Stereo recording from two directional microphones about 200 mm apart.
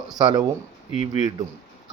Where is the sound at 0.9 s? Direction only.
35° left (ahead or behind).